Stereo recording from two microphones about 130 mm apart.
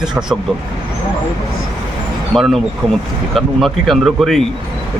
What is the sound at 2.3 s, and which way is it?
Speech, centre (ahead or behind).